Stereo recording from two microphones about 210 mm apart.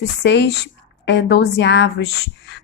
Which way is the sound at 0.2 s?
55° left (ahead or behind).